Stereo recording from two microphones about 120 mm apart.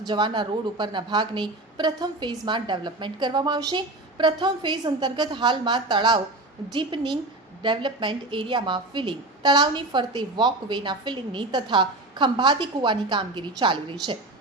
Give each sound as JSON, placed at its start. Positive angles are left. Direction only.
{"t": 0.0, "sound": "a woman's voice", "side_deg": -40}